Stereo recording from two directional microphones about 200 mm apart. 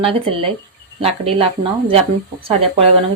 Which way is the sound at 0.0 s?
30° right (ahead or behind).